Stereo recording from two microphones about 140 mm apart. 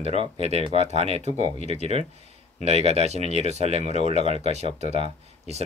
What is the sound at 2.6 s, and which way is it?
Speech, 50° right (ahead or behind).